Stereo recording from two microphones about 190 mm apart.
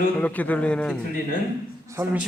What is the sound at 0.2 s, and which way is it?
Speech, 10° left (ahead or behind).